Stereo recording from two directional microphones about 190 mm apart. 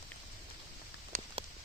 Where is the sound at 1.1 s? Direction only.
45° right (ahead or behind).